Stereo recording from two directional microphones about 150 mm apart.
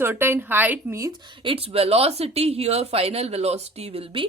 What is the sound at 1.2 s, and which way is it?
A woman's voice, 30° right (ahead or behind).